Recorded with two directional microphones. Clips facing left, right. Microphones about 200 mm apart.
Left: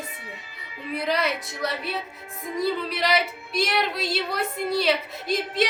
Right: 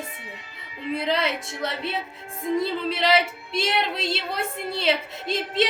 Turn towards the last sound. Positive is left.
turn(degrees=-25)  # may be behind; listen again after turning